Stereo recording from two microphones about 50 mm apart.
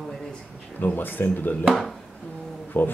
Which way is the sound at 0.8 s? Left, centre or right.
Left.